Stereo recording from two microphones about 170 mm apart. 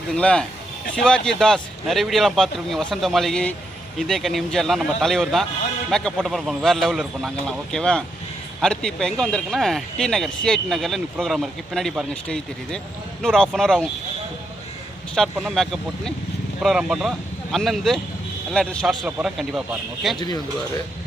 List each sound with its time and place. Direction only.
0.1 s speech: 5° left (ahead or behind)
15.1 s speech: centre (ahead or behind)
20.1 s speech: 25° left (ahead or behind)